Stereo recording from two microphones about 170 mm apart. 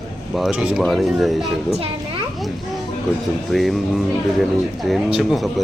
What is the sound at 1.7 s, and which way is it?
Children playing, 35° right (ahead or behind).